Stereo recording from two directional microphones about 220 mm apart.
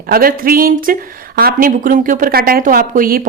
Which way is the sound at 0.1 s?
40° right (ahead or behind).